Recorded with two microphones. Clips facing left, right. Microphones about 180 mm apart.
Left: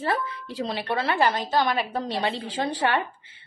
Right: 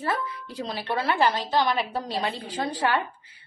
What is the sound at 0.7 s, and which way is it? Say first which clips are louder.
A woman's voice: even; 25° left (ahead or behind).